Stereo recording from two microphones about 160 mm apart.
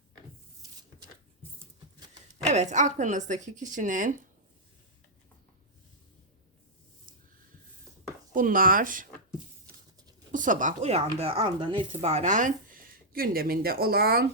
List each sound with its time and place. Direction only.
2.5 s speech: 45° right (ahead or behind)
8.3 s speech: 55° right (ahead or behind)
10.3 s speech: 55° right (ahead or behind); by 12.1 s 30° right (ahead or behind)
12.1 s speech: 50° right (ahead or behind); by 14.3 s 70° right (ahead or behind)